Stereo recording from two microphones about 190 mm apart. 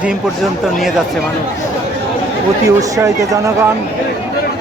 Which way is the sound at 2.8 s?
15° right (ahead or behind).